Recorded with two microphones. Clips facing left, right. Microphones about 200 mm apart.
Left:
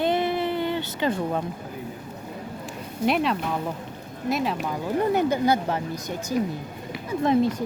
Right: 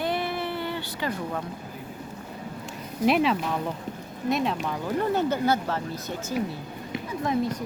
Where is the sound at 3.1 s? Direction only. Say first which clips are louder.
Right 1 dB; centre (ahead or behind).